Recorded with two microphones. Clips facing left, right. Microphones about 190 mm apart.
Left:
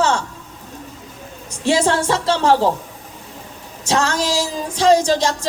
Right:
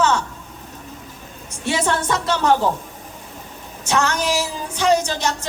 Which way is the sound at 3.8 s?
30° left (ahead or behind).